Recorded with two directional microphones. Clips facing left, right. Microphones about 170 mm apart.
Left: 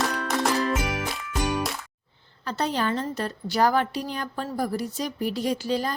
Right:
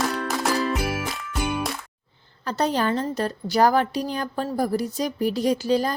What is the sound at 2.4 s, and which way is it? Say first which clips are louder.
A woman's voice: right 3 dB; 40° right (ahead or behind).